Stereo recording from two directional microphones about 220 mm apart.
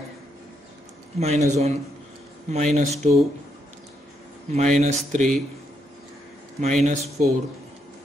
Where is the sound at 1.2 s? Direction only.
30° right (ahead or behind).